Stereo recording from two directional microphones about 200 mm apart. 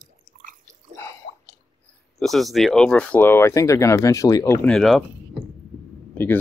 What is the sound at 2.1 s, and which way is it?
Speech, centre (ahead or behind).